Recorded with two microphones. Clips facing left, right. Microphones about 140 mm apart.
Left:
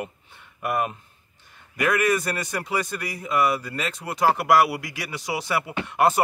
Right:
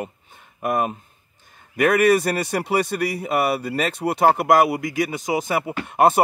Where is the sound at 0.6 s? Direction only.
40° right (ahead or behind).